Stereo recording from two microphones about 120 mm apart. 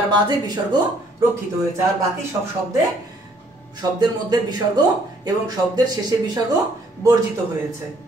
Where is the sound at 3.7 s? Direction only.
35° right (ahead or behind).